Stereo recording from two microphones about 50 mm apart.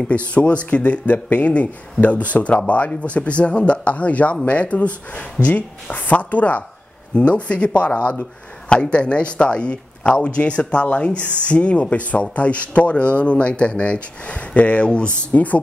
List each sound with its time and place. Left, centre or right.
0.0 s speech: left